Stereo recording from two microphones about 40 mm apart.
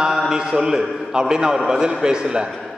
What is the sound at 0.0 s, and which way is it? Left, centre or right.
A man's voice, centre.